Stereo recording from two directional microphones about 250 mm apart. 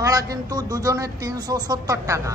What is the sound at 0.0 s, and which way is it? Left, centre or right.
A man's voice, centre.